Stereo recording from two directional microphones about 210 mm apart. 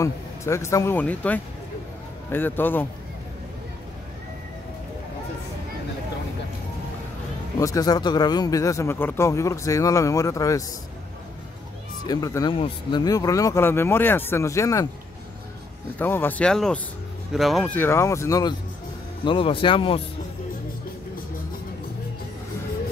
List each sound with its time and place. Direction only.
0.0 s speech: 15° left (ahead or behind)
7.5 s speech: 15° left (ahead or behind)
12.1 s speech: 15° left (ahead or behind)
16.0 s speech: 10° left (ahead or behind)